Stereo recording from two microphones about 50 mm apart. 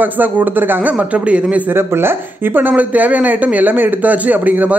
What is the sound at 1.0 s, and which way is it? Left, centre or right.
Speech, right.